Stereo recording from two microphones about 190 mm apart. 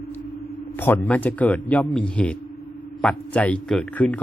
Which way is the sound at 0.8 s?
10° left (ahead or behind).